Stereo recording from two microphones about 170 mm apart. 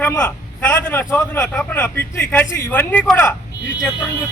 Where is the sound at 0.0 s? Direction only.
15° left (ahead or behind).